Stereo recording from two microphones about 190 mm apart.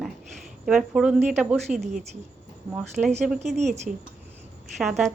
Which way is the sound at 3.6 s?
35° right (ahead or behind).